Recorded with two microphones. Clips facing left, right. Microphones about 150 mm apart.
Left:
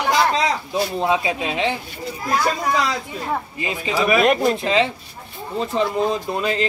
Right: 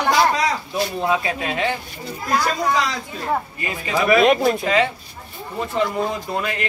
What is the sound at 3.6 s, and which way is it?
Speech, 20° left (ahead or behind).